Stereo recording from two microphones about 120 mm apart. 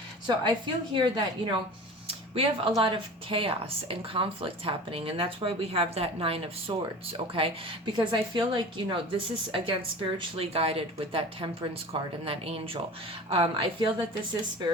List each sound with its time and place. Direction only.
0.3 s a woman's voice: 40° right (ahead or behind)
2.0 s speech: 50° right (ahead or behind)
7.9 s speech: 40° right (ahead or behind)